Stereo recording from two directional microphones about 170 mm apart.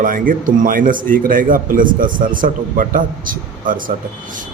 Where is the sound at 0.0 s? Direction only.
55° right (ahead or behind).